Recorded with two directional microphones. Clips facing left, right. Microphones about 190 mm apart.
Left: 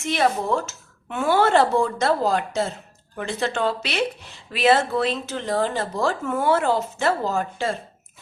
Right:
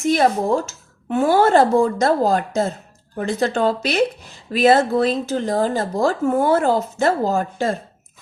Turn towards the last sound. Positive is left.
turn(degrees=-40)  # may be behind; listen again after turning